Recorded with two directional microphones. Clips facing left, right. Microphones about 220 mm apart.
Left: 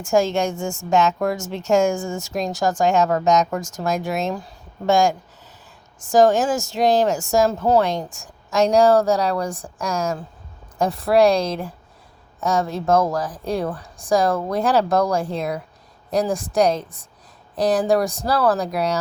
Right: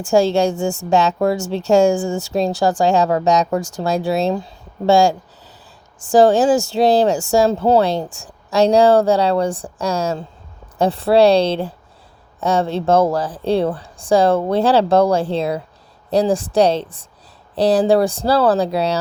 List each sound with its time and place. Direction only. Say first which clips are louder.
0.0 s speech: right 4 dB; 35° right (ahead or behind)